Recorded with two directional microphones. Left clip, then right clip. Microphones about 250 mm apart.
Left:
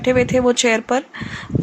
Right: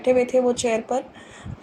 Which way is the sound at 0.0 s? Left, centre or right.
Centre.